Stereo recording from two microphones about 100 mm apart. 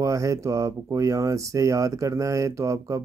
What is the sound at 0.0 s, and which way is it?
Mantra, 35° right (ahead or behind).